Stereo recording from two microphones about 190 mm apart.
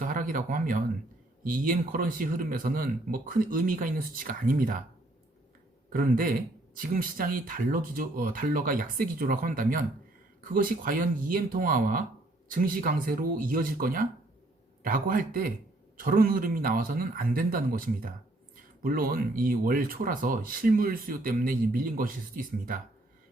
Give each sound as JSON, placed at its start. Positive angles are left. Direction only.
{"t": 0.0, "sound": "speech", "side_deg": -45}
{"t": 5.9, "sound": "speech", "side_deg": -45}